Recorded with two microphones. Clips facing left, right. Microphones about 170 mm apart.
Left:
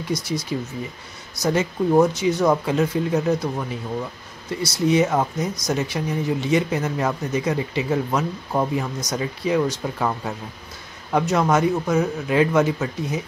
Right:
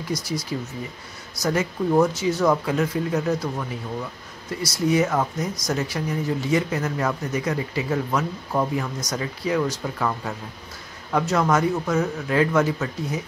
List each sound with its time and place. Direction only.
0.1 s speech: centre (ahead or behind)
0.5 s speech: 20° left (ahead or behind)